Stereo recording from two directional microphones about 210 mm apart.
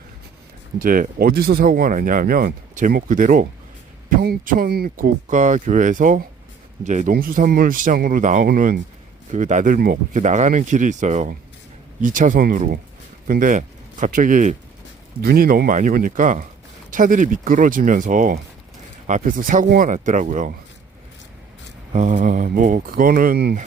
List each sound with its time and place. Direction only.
0.8 s speech: 40° right (ahead or behind)
21.9 s speech: 35° right (ahead or behind)